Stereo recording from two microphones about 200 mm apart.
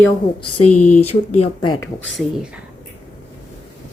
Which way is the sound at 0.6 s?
5° left (ahead or behind).